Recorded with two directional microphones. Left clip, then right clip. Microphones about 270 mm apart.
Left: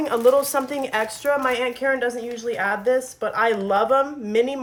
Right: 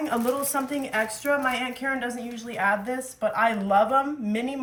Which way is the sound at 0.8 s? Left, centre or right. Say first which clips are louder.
Left 3 dB; left.